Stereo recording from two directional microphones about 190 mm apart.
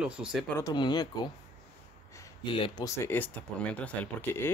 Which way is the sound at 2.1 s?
15° left (ahead or behind).